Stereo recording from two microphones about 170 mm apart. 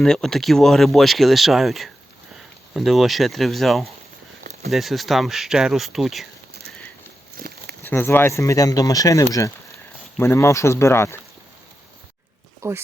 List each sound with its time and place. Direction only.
0.0 s speech: 5° left (ahead or behind)
7.3 s a sound: 65° right (ahead or behind)
7.9 s speech: 15° left (ahead or behind)
12.6 s speech: 15° right (ahead or behind)